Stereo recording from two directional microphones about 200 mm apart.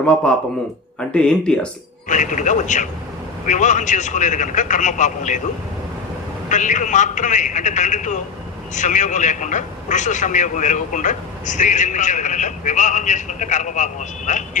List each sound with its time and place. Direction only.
1.1 s speech: 5° left (ahead or behind)
2.0 s a man's voice: 40° left (ahead or behind)
6.5 s a man's voice: 40° left (ahead or behind)